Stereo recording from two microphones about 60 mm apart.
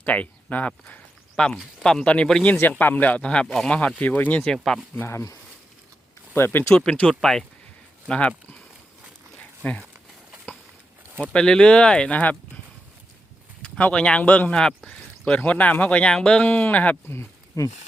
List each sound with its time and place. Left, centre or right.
0.0 s speech: left
2.6 s speech: left
3.4 s speech: centre
3.7 s speech: left
4.4 s speech: centre
4.9 s speech: left
6.3 s speech: left
6.7 s speech: centre
7.1 s speech: centre
9.6 s speech: left
11.3 s speech: centre
13.6 s speech: left
14.5 s speech: centre
17.6 s speech: left